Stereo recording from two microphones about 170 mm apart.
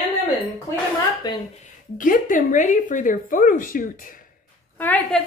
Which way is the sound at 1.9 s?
50° left (ahead or behind).